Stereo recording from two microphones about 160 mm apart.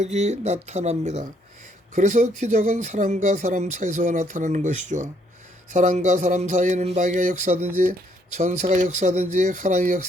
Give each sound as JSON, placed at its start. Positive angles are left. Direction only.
{"t": 0.0, "sound": "speech", "side_deg": -45}